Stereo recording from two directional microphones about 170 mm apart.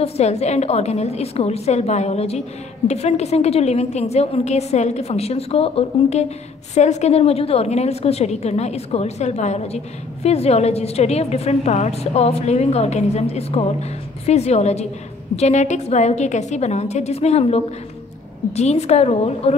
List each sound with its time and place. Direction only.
0.0 s a woman's voice: 40° left (ahead or behind)